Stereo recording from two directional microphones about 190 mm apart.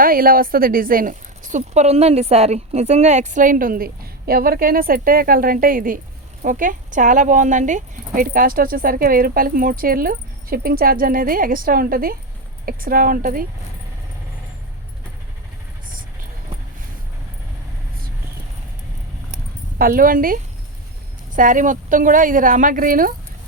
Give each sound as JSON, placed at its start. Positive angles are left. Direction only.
{"t": 0.0, "sound": "a woman's voice", "side_deg": -50}
{"t": 19.8, "sound": "a woman's voice", "side_deg": -50}